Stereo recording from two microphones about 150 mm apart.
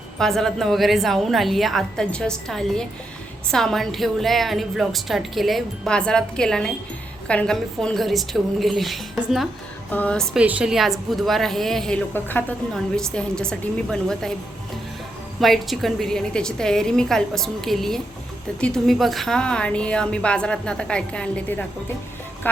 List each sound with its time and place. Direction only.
0.2 s a woman's voice: centre (ahead or behind)
9.9 s a woman's voice: 10° left (ahead or behind)
10.3 s a woman's voice: 10° right (ahead or behind)
15.4 s a woman's voice: centre (ahead or behind)